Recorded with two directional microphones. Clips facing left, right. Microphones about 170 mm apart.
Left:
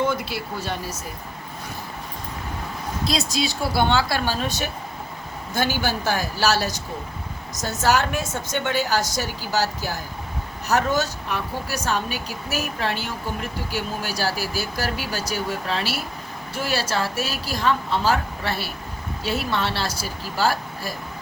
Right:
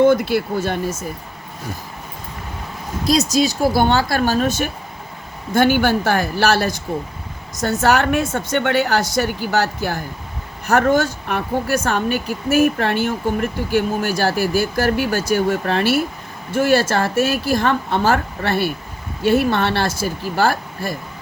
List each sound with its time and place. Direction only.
0.0 s a woman's voice: 55° right (ahead or behind)
3.1 s a woman's voice: 45° right (ahead or behind)